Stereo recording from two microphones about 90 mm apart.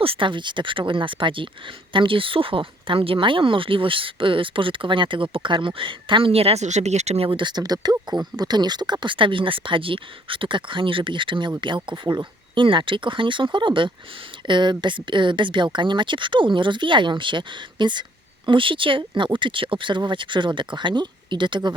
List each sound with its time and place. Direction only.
0.0 s speech: 80° right
7.2 s speech: 65° right (ahead or behind)
18.4 s speech: 70° right (ahead or behind)